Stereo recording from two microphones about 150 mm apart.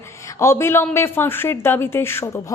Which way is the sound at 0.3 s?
20° left (ahead or behind).